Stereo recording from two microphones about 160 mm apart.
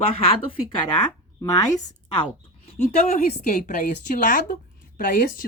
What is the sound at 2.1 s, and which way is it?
A woman's voice, 35° left (ahead or behind).